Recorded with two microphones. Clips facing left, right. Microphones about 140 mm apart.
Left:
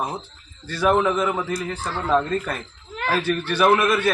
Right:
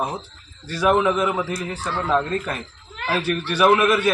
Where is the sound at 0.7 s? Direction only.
5° right (ahead or behind).